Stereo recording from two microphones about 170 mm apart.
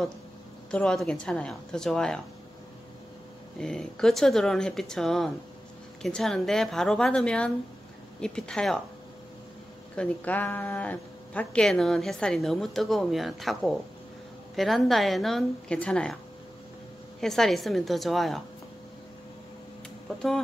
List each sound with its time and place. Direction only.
0.7 s speech: 5° left (ahead or behind)
3.5 s speech: 5° left (ahead or behind)
9.9 s speech: 10° left (ahead or behind)
17.2 s speech: centre (ahead or behind)
20.2 s speech: centre (ahead or behind)